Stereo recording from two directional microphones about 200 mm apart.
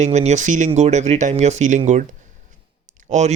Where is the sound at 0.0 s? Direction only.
35° right (ahead or behind).